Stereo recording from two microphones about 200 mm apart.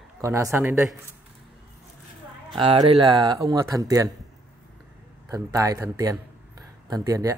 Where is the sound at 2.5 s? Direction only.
25° right (ahead or behind).